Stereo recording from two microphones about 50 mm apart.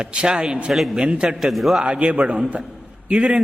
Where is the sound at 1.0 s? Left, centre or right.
Right.